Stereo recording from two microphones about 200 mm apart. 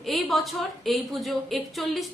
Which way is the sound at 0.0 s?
Centre (ahead or behind).